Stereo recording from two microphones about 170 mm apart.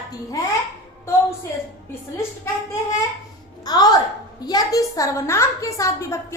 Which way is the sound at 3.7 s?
25° left (ahead or behind).